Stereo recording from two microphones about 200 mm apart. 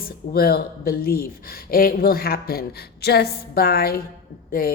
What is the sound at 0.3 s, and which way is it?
A woman's voice, 50° left (ahead or behind).